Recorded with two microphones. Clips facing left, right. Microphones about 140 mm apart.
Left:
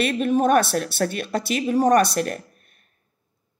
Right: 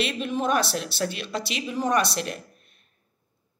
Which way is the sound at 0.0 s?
50° left (ahead or behind).